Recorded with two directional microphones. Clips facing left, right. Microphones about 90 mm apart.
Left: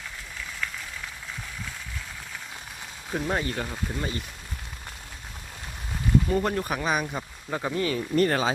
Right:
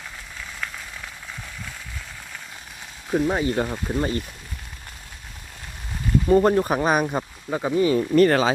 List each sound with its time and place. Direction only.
3.1 s speech: 10° right (ahead or behind)
3.5 s speech: 35° right (ahead or behind)
6.2 s speech: 40° right (ahead or behind)
7.5 s speech: 10° right (ahead or behind)
8.1 s speech: 90° right